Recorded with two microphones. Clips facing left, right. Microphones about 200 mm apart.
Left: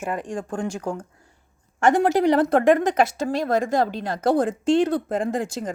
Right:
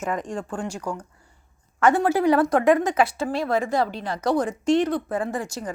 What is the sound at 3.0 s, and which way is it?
A woman's voice, 45° left (ahead or behind).